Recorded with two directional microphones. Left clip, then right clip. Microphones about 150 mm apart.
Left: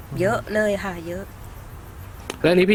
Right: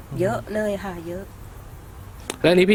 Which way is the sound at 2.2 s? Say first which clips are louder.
Right 1 dB; 10° right (ahead or behind).